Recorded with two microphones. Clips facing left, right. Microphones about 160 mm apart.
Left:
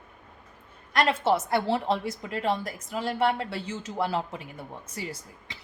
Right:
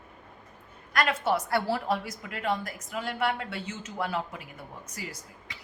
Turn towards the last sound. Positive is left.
turn(degrees=30)  # may be behind; listen again after turning